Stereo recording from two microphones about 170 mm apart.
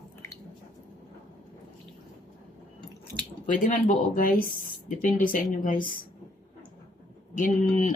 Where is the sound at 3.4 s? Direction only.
50° left (ahead or behind).